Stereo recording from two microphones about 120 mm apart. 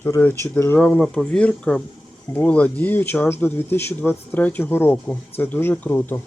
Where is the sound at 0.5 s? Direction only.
15° left (ahead or behind).